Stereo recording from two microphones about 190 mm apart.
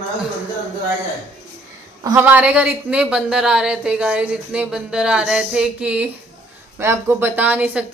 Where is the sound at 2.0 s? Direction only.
15° right (ahead or behind).